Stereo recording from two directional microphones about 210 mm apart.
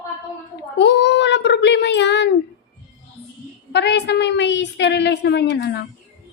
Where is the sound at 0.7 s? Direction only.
55° left (ahead or behind).